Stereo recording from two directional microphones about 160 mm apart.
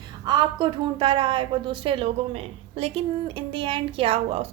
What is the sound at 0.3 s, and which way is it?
A woman's voice, 30° right (ahead or behind).